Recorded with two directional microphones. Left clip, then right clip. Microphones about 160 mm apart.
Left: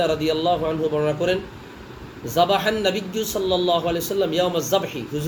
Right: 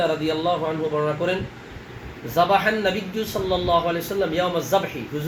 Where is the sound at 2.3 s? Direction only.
35° left (ahead or behind).